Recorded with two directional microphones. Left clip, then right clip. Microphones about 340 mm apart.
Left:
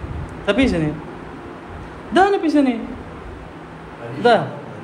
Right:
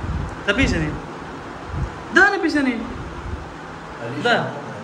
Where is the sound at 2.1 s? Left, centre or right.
Centre.